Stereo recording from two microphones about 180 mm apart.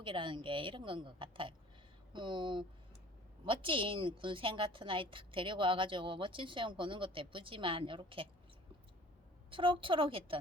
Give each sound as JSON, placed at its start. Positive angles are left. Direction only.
{"t": 0.0, "sound": "a woman's voice", "side_deg": -30}
{"t": 9.5, "sound": "a woman's voice", "side_deg": -30}